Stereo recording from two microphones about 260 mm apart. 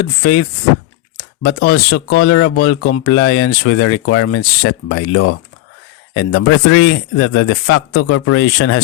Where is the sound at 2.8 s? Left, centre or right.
Left.